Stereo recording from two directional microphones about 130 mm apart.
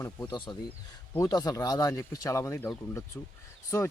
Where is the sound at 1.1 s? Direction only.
30° left (ahead or behind).